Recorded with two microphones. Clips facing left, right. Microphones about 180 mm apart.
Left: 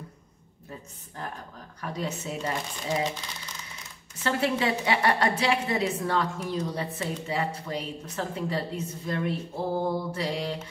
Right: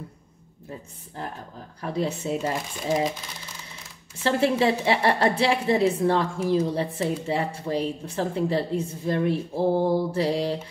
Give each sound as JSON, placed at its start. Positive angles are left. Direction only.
{"t": 1.8, "sound": "a woman's voice", "side_deg": -30}
{"t": 4.2, "sound": "a woman's voice", "side_deg": -30}